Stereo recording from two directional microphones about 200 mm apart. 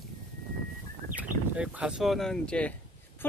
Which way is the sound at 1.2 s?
5° right (ahead or behind).